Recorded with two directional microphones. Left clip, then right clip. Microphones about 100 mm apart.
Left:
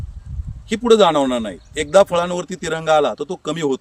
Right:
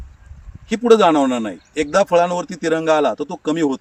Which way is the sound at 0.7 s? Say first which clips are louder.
Right 1 dB; 50° left (ahead or behind).